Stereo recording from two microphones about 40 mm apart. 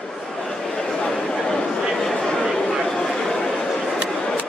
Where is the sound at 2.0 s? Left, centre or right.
Centre.